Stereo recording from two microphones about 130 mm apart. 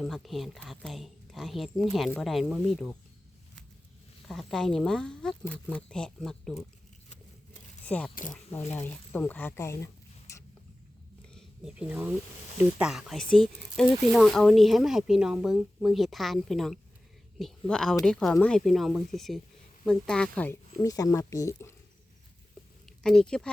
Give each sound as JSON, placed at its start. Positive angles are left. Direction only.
{"t": 0.0, "sound": "speech", "side_deg": 0}
{"t": 4.3, "sound": "speech", "side_deg": 0}
{"t": 7.9, "sound": "speech", "side_deg": 10}
{"t": 11.3, "sound": "speech", "side_deg": -5}
{"t": 20.8, "sound": "speech", "side_deg": 25}
{"t": 23.0, "sound": "speech", "side_deg": 5}